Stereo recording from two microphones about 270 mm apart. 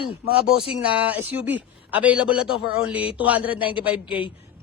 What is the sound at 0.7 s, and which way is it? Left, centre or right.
A man's voice, centre.